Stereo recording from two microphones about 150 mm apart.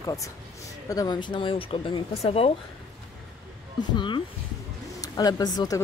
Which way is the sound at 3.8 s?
30° left (ahead or behind).